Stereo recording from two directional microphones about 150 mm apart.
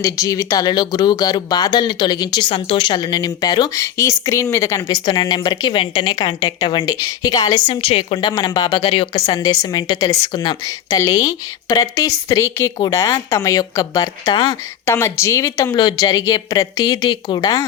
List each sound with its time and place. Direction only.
0.0 s speech: 20° left (ahead or behind)
7.7 s a woman's voice: 40° left (ahead or behind)
8.3 s speech: 25° left (ahead or behind)
14.8 s speech: 15° left (ahead or behind)